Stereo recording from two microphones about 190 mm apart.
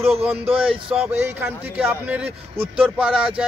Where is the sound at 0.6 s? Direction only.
30° right (ahead or behind).